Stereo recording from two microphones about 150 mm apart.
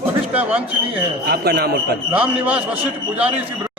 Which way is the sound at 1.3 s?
90° right.